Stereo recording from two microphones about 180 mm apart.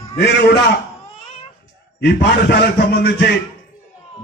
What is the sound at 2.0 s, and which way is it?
A man's voice, 65° left (ahead or behind).